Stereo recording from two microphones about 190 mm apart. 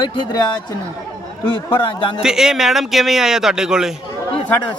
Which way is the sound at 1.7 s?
25° left (ahead or behind).